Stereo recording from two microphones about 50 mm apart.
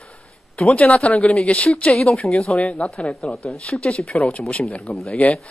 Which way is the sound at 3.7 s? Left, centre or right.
Centre.